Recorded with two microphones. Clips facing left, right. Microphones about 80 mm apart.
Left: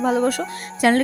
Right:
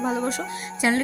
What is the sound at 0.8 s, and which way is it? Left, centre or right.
Speech, left.